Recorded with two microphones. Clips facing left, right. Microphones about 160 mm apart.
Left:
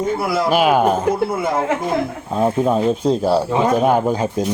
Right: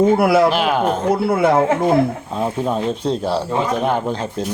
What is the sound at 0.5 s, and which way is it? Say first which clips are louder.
Speech: left 3 dB; 5° left (ahead or behind).